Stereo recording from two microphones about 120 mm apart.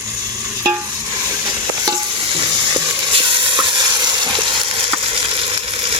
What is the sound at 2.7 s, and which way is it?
Frying, 40° right (ahead or behind).